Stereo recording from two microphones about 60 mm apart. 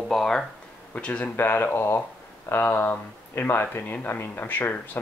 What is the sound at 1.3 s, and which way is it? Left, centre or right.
Speech, left.